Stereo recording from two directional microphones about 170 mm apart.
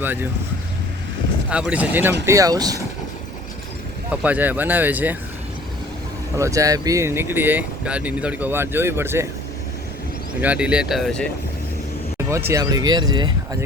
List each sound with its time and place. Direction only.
0.0 s speech: 10° right (ahead or behind)
1.5 s speech: 5° right (ahead or behind)
4.1 s speech: 10° right (ahead or behind)
6.3 s speech: 20° right (ahead or behind)
10.4 s speech: 5° right (ahead or behind)
12.3 s speech: 15° right (ahead or behind)